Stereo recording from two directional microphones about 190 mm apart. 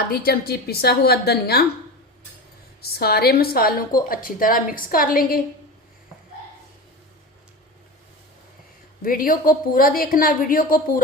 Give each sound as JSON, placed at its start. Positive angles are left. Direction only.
{"t": 0.1, "sound": "a woman's voice", "side_deg": 55}
{"t": 3.0, "sound": "a woman's voice", "side_deg": 55}
{"t": 9.0, "sound": "a woman's voice", "side_deg": 50}